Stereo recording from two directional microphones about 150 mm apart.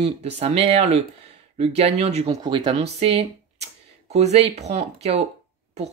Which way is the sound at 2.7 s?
45° right (ahead or behind).